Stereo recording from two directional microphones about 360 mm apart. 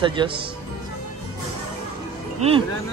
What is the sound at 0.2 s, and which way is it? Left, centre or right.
Speech, centre.